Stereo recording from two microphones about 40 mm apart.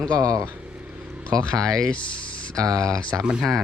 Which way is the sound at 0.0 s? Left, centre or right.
Left.